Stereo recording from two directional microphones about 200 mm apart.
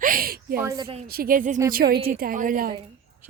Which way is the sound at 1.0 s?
50° right (ahead or behind).